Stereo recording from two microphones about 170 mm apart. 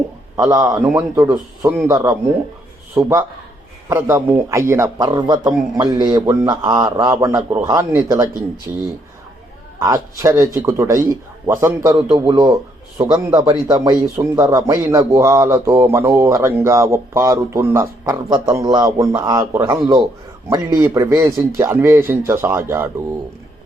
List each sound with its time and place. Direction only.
0.3 s a man's voice: 20° right (ahead or behind)
9.8 s a man's voice: 20° right (ahead or behind)